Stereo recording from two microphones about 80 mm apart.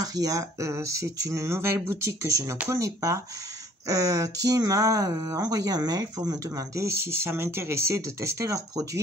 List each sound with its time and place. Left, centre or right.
0.0 s speech: right
5.4 s speech: right